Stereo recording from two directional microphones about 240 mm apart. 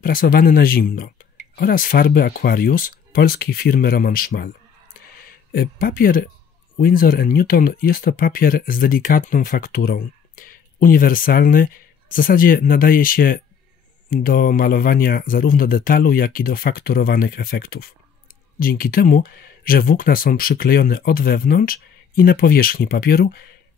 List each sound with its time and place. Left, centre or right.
0.0 s speech: left
5.5 s speech: left